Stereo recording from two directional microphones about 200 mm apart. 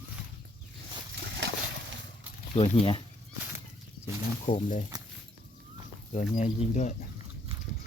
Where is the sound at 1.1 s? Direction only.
65° right (ahead or behind).